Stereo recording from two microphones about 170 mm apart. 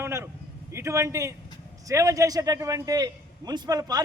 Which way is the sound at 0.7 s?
15° right (ahead or behind).